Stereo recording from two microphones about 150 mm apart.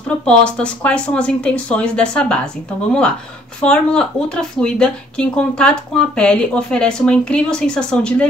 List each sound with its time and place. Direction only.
0.2 s speech: 5° left (ahead or behind)